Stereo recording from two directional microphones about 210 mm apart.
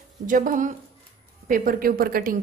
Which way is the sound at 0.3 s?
40° right (ahead or behind).